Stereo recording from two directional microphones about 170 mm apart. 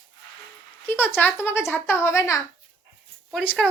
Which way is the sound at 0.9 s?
10° left (ahead or behind).